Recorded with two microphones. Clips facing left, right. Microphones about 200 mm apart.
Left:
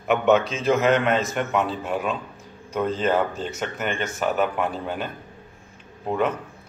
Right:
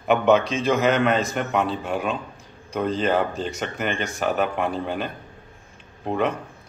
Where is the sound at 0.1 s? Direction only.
Centre (ahead or behind).